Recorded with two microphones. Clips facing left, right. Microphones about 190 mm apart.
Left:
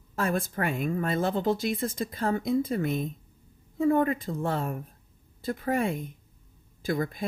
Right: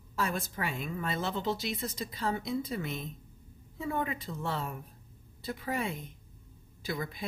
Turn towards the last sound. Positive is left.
turn(degrees=50)  # may be behind; listen again after turning